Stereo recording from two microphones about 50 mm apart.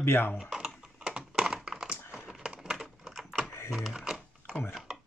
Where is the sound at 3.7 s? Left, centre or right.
Centre.